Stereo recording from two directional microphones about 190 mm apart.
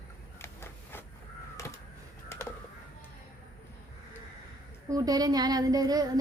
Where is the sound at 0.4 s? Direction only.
10° left (ahead or behind).